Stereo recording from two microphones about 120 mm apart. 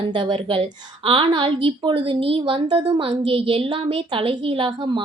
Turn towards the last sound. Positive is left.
turn(degrees=-45)  # may be behind; listen again after turning